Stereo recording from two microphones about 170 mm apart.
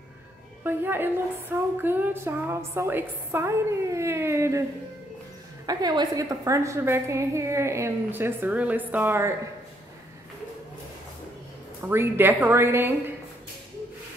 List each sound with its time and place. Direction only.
0.7 s a woman's voice: 10° right (ahead or behind)
5.7 s a woman's voice: 25° right (ahead or behind)
11.8 s a woman's voice: 15° right (ahead or behind)